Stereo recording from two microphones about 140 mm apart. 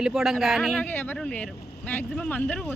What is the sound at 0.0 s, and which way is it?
Speech, 5° right (ahead or behind).